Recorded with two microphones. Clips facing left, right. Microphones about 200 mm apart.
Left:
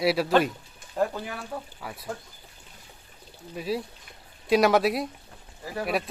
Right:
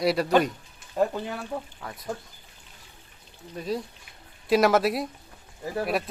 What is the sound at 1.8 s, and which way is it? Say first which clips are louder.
Speech: left 1 dB; 5° left (ahead or behind).